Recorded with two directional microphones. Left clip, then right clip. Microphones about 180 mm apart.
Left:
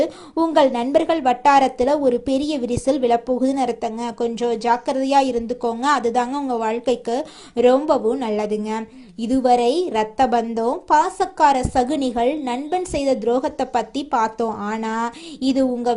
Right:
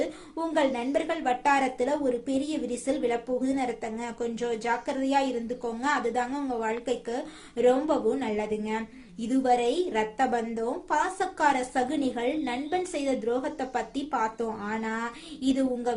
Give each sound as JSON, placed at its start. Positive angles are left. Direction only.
{"t": 0.0, "sound": "a woman's voice", "side_deg": 40}